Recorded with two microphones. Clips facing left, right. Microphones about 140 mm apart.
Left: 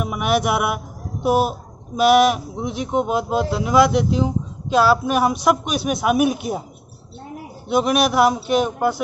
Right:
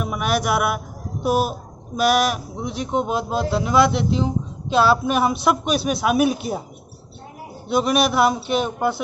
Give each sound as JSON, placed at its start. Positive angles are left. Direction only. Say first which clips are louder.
{"t": 0.0, "sound": "a sound", "louder": "left 2 dB", "side_deg": 15}
{"t": 1.2, "sound": "speech", "louder": "left 2 dB", "side_deg": 20}
{"t": 7.6, "sound": "speech", "louder": "left 1 dB", "side_deg": 15}